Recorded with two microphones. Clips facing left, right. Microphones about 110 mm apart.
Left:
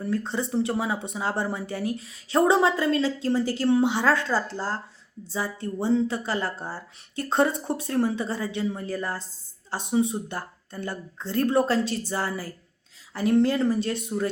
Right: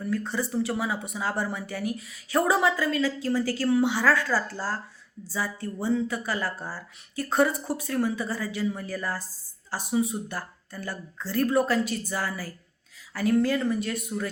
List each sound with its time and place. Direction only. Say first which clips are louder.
0.0 s speech: left 1 dB; 30° left (ahead or behind)